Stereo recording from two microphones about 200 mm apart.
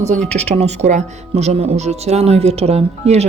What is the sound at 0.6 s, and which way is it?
Speech, 35° right (ahead or behind).